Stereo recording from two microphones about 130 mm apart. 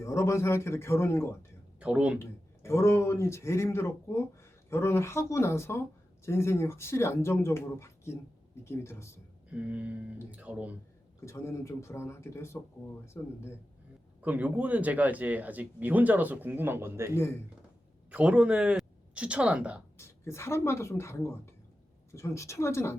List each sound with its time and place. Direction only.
0.0 s speech: 25° left (ahead or behind)
1.8 s a man's voice: 10° right (ahead or behind)
2.6 s speech: 20° left (ahead or behind)
9.5 s a man's voice: 10° right (ahead or behind)
11.3 s speech: 20° left (ahead or behind)
14.2 s a man's voice: 10° right (ahead or behind)
18.1 s speech: 10° right (ahead or behind)
20.0 s speech: 20° left (ahead or behind)